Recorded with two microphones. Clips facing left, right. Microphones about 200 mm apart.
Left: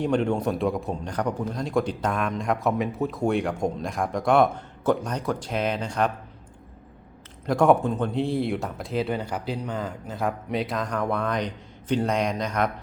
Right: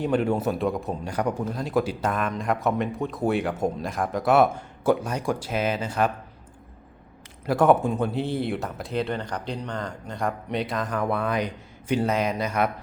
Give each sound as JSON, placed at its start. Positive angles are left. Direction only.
{"t": 0.0, "sound": "a man's voice", "side_deg": -5}
{"t": 7.4, "sound": "a man's voice", "side_deg": -5}